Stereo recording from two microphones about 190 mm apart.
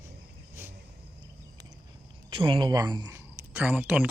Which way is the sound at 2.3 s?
25° right (ahead or behind).